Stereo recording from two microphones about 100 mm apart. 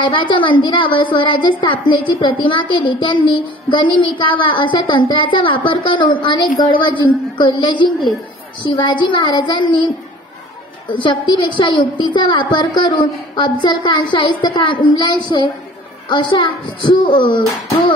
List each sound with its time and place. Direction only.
0.0 s a woman's voice: 55° left (ahead or behind)